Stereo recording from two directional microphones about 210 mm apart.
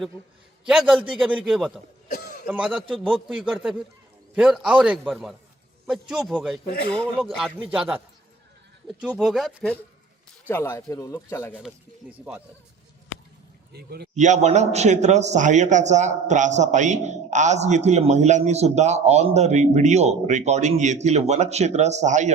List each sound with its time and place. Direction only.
0.7 s a man's voice: 5° right (ahead or behind)
10.5 s speech: 10° left (ahead or behind)
12.1 s speech: 5° right (ahead or behind)
13.7 s a man's voice: 50° right (ahead or behind)
14.2 s a man's voice: 35° right (ahead or behind)